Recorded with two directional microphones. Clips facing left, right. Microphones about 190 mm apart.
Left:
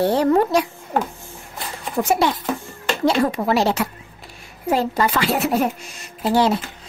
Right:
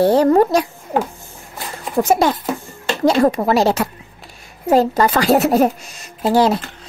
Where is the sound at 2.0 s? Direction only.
45° right (ahead or behind).